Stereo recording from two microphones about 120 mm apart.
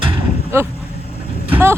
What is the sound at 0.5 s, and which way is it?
Speech, 20° right (ahead or behind).